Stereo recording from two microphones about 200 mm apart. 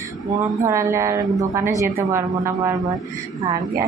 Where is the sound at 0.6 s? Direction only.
15° right (ahead or behind).